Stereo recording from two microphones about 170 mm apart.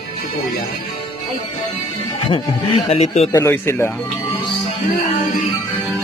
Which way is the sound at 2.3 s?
35° left (ahead or behind).